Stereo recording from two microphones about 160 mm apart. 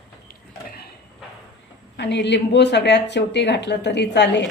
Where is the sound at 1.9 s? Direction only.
90° left.